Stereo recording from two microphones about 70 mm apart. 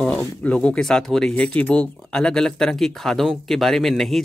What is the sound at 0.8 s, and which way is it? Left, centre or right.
Speech, centre.